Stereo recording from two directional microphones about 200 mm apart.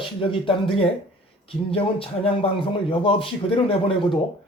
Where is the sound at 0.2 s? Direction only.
25° left (ahead or behind).